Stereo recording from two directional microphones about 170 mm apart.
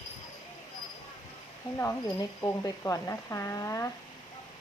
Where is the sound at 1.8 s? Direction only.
15° left (ahead or behind).